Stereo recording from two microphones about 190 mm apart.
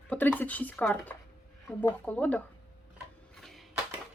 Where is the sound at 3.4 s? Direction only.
Centre (ahead or behind).